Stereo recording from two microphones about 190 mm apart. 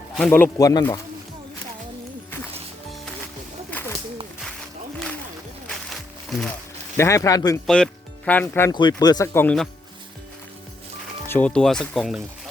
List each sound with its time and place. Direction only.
0.2 s speech: 10° left (ahead or behind)
3.7 s snake: 10° left (ahead or behind)
5.6 s music: centre (ahead or behind)
6.9 s speech: 15° left (ahead or behind)
7.7 s speech: 5° left (ahead or behind)
8.7 s speech: 20° left (ahead or behind)
11.3 s speech: 5° left (ahead or behind)